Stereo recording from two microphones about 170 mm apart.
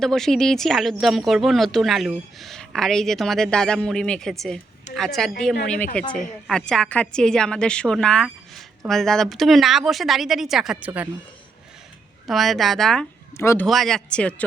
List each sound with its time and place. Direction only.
0.0 s speech: centre (ahead or behind)
12.3 s speech: centre (ahead or behind)
13.3 s speech: 15° left (ahead or behind)
13.7 s speech: centre (ahead or behind)